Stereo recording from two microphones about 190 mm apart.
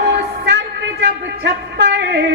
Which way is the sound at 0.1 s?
65° right (ahead or behind).